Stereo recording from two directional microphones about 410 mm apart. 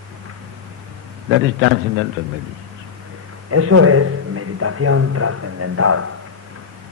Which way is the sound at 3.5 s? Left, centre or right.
Right.